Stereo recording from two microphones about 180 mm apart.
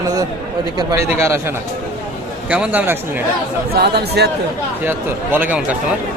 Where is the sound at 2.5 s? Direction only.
10° right (ahead or behind).